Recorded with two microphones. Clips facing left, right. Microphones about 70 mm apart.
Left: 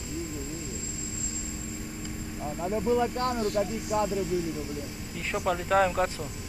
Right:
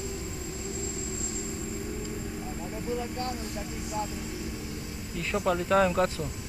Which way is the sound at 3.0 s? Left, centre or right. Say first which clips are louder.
Left 6 dB; left.